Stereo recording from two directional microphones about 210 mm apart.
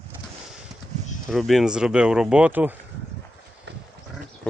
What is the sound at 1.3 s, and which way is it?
Speech, centre (ahead or behind).